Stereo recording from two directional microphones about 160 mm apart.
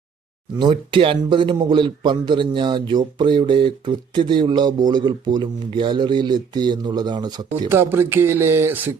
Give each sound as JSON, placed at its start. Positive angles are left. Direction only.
{"t": 0.6, "sound": "speech", "side_deg": -30}
{"t": 7.7, "sound": "speech", "side_deg": -15}